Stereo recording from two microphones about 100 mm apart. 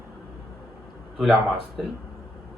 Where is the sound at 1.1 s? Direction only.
Centre (ahead or behind).